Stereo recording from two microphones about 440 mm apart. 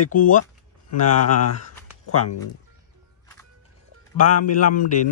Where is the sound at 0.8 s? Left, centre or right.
Left.